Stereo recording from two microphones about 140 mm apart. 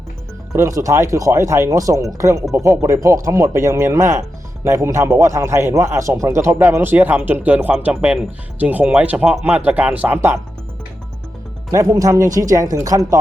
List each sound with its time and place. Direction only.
0.5 s speech: 20° right (ahead or behind)
11.7 s speech: 25° right (ahead or behind)